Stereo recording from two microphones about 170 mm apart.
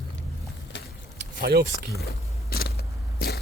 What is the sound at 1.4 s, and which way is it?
Speech, 70° right (ahead or behind).